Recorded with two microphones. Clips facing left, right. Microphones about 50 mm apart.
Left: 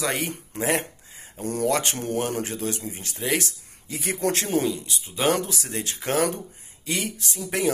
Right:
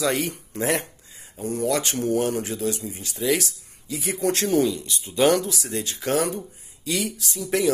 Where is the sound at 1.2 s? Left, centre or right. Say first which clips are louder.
Right 1 dB; left.